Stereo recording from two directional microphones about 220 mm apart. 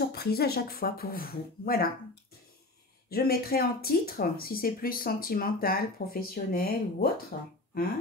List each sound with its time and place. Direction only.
0.0 s speech: 45° left (ahead or behind)
3.1 s speech: 45° left (ahead or behind)